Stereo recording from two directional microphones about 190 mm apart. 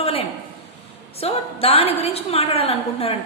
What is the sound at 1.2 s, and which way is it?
A woman's voice, 30° left (ahead or behind).